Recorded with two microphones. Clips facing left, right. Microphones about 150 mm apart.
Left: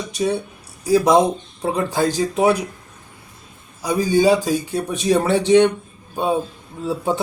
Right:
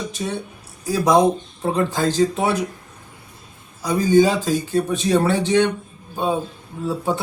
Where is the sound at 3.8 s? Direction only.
10° left (ahead or behind).